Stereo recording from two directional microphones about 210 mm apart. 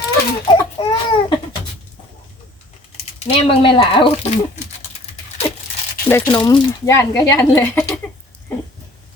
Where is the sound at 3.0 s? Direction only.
30° left (ahead or behind).